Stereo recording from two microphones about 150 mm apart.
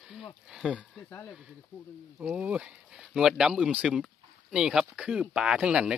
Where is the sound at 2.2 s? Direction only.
5° right (ahead or behind).